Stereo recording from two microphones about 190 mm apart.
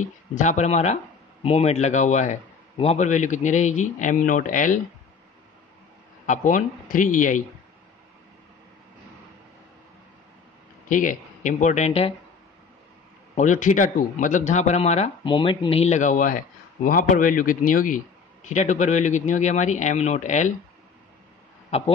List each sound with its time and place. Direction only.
0.0 s a man's voice: 40° left (ahead or behind)
6.2 s a man's voice: 40° left (ahead or behind)
10.9 s speech: 45° left (ahead or behind)
13.3 s a man's voice: 40° left (ahead or behind)
21.6 s speech: 30° left (ahead or behind)